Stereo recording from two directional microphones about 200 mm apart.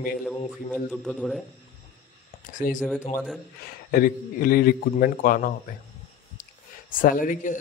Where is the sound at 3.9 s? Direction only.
45° left (ahead or behind).